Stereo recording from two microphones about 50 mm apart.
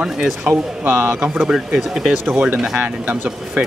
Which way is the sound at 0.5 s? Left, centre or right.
Right.